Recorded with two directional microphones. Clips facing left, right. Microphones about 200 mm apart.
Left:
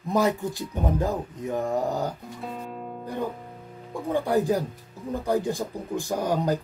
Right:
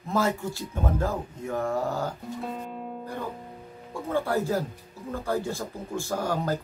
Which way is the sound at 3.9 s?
15° left (ahead or behind).